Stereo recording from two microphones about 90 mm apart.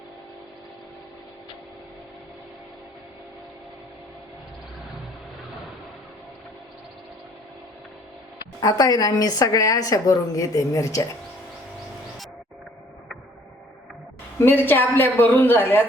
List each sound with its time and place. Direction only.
8.6 s a woman's voice: 45° left (ahead or behind)
14.3 s speech: 20° left (ahead or behind)